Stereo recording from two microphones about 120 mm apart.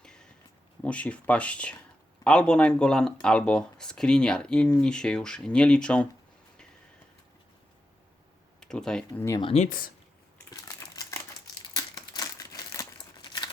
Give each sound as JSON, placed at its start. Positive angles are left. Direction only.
{"t": 0.0, "sound": "a sound", "side_deg": 5}
{"t": 0.8, "sound": "speech", "side_deg": 10}
{"t": 8.6, "sound": "speech", "side_deg": 5}
{"t": 9.5, "sound": "speech", "side_deg": 65}
{"t": 10.5, "sound": "crumpling", "side_deg": 25}
{"t": 11.7, "sound": "typewriter", "side_deg": 30}
{"t": 13.2, "sound": "crumpling", "side_deg": 40}